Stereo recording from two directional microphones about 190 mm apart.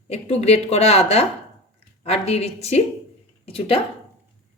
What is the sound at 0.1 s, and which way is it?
A woman's voice, 35° left (ahead or behind).